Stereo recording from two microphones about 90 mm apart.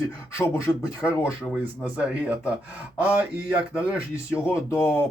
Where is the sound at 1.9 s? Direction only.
15° right (ahead or behind).